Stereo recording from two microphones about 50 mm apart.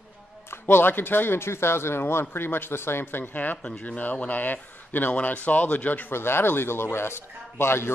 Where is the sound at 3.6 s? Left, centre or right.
Left.